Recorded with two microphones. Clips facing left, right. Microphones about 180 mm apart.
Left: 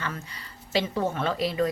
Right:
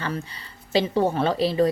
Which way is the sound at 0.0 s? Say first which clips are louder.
Right 5 dB; 30° right (ahead or behind).